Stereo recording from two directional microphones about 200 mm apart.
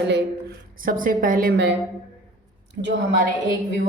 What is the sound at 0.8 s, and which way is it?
Speech, 45° right (ahead or behind).